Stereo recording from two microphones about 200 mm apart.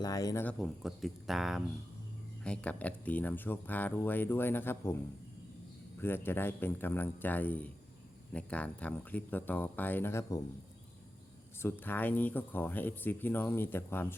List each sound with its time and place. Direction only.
0.0 s speech: 20° left (ahead or behind)
0.4 s speech: centre (ahead or behind)
6.0 s speech: 10° left (ahead or behind)
11.6 s speech: 10° left (ahead or behind)